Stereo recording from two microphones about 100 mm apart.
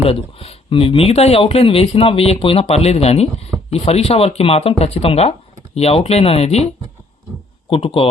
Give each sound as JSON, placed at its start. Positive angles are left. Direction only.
{"t": 0.0, "sound": "speech", "side_deg": 80}
{"t": 7.7, "sound": "speech", "side_deg": 70}